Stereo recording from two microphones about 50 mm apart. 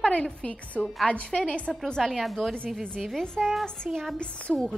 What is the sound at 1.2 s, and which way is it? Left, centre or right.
Speech, centre.